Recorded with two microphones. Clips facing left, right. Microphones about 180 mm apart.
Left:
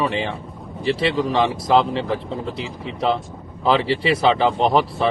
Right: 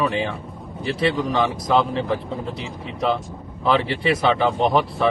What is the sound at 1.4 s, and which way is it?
Speech, 30° left (ahead or behind).